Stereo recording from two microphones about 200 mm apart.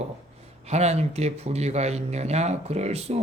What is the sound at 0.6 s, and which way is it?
A man's voice, 35° right (ahead or behind).